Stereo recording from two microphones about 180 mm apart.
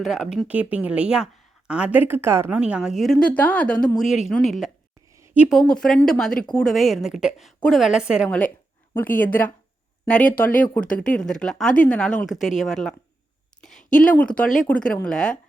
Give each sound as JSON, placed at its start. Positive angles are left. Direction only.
{"t": 0.0, "sound": "speech", "side_deg": 0}
{"t": 5.2, "sound": "a sound", "side_deg": -10}
{"t": 5.5, "sound": "speech", "side_deg": 5}
{"t": 8.3, "sound": "speech", "side_deg": 10}
{"t": 10.6, "sound": "speech", "side_deg": 5}
{"t": 13.6, "sound": "a sound", "side_deg": 5}
{"t": 14.0, "sound": "speech", "side_deg": 5}